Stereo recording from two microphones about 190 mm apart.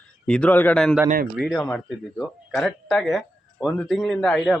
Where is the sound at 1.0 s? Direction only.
45° right (ahead or behind).